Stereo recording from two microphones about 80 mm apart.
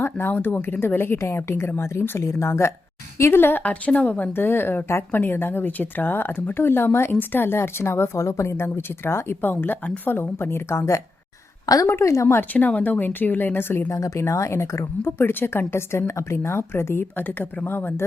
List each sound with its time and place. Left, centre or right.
0.0 s speech: left
11.6 s a woman's voice: left
11.9 s speech: left
12.4 s speech: left
13.9 s speech: left